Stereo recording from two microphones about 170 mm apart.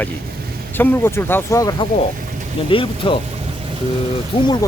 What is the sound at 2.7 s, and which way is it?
Speech, 30° left (ahead or behind).